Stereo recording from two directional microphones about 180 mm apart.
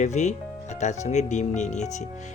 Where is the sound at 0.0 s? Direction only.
40° left (ahead or behind).